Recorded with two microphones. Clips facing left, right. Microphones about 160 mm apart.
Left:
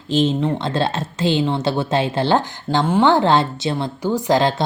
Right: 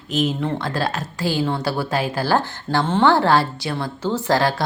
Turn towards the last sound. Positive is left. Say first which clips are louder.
# left 2 dB
turn(degrees=20)  # may be behind; listen again after turning